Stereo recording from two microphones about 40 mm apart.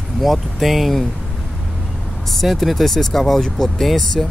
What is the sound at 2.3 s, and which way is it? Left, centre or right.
Speech, centre.